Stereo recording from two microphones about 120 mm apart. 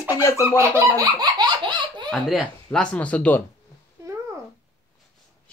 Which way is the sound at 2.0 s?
Centre (ahead or behind).